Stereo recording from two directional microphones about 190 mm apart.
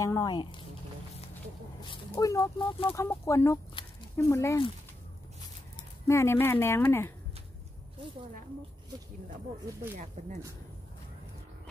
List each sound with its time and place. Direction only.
0.0 s speech: 20° left (ahead or behind)
1.8 s speech: 20° left (ahead or behind)
3.8 s a sound: 25° left (ahead or behind)
4.2 s speech: 15° left (ahead or behind)
6.0 s speech: 15° left (ahead or behind)
10.2 s speech: 40° right (ahead or behind)